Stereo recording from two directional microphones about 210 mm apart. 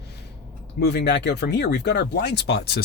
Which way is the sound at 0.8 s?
50° left (ahead or behind).